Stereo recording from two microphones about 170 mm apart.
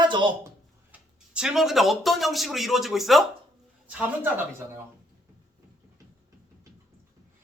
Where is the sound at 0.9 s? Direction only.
5° right (ahead or behind).